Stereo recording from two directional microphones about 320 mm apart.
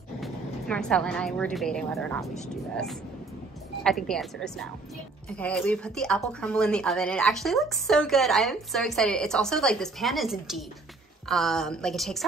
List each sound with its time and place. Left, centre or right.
0.2 s speech: centre
3.8 s speech: centre